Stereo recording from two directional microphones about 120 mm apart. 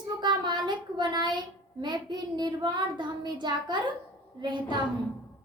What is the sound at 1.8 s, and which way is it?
Child singing, 35° right (ahead or behind).